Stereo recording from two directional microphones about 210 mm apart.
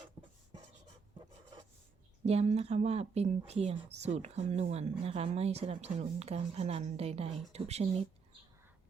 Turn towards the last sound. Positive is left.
turn(degrees=-30)  # may be behind; listen again after turning